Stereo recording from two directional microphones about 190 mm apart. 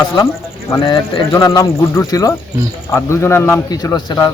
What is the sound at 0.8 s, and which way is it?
Speech, 30° left (ahead or behind).